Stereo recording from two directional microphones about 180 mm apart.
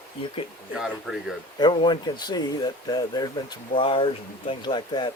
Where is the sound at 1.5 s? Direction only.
25° left (ahead or behind).